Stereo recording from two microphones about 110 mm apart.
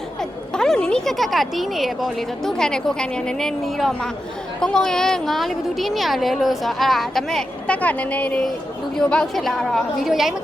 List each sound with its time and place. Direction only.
0.2 s speech: 5° left (ahead or behind)